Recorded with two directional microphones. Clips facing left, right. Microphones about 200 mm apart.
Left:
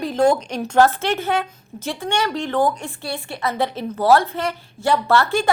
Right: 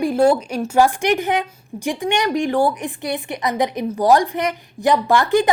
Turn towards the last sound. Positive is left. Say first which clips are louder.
# right 3 dB
turn(degrees=-20)  # may be behind; listen again after turning